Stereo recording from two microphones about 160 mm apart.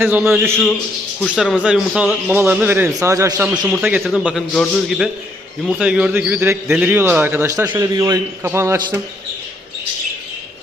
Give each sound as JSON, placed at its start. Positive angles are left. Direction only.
{"t": 0.0, "sound": "a man's voice", "side_deg": -10}
{"t": 2.2, "sound": "a man's voice", "side_deg": -10}